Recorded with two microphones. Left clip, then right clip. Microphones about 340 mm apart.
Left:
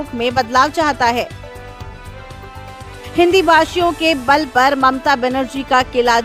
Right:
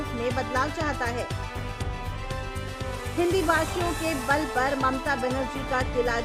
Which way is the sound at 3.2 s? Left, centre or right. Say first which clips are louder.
Left 13 dB; left.